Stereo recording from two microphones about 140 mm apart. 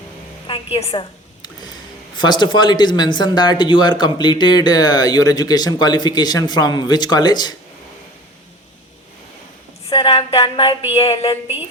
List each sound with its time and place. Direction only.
0.4 s a woman's voice: 40° left (ahead or behind)
2.1 s speech: 35° left (ahead or behind)
9.8 s speech: 40° left (ahead or behind)